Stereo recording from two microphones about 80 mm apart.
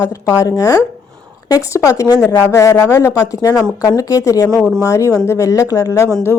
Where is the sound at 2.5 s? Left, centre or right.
Left.